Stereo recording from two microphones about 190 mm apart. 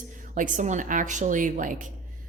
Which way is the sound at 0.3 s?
45° right (ahead or behind).